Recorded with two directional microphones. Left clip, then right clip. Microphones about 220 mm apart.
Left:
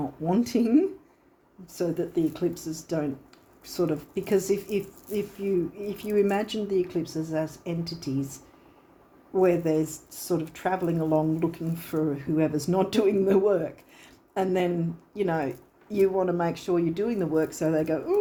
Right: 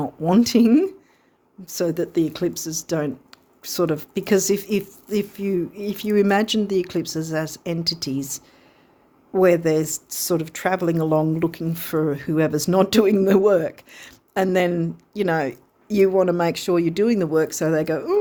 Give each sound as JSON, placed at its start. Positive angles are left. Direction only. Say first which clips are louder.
{"t": 0.3, "sound": "speech", "louder": "right 8 dB", "side_deg": -45}